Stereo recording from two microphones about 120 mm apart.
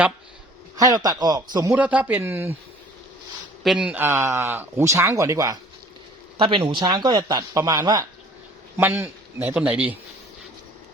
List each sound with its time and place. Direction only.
0.8 s a man's voice: 30° right (ahead or behind)
1.7 s a man's voice: 10° right (ahead or behind)
3.6 s speech: centre (ahead or behind)
3.8 s speech: 15° right (ahead or behind)
6.3 s a man's voice: 50° right (ahead or behind); by 8.0 s 35° right (ahead or behind)
8.8 s a man's voice: 20° right (ahead or behind)